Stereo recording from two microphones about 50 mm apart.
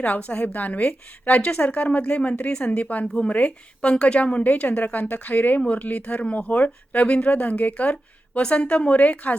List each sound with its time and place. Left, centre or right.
0.0 s a woman's voice: left